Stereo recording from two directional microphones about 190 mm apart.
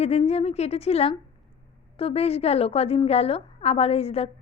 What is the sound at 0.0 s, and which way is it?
A woman's voice, 35° left (ahead or behind).